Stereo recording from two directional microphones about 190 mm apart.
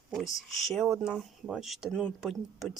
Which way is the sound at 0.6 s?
Centre (ahead or behind).